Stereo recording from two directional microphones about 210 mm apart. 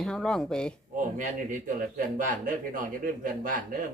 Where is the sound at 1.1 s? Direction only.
40° right (ahead or behind).